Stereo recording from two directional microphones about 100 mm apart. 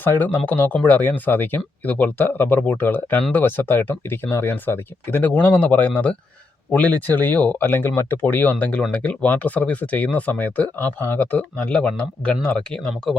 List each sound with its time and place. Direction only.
0.0 s speech: 20° left (ahead or behind)